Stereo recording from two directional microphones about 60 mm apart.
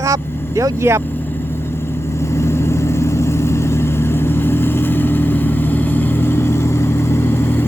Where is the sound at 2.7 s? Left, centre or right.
Left.